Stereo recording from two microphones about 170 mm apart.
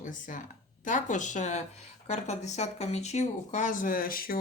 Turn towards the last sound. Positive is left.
turn(degrees=60)  # may be behind; listen again after turning